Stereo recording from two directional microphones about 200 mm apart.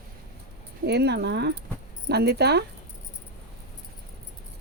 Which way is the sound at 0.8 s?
55° right (ahead or behind).